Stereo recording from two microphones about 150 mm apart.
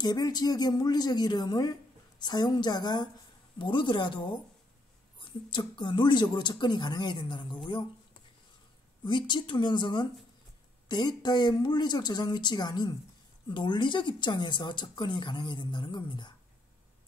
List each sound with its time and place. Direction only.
0.0 s speech: 25° left (ahead or behind)
9.0 s speech: 30° left (ahead or behind)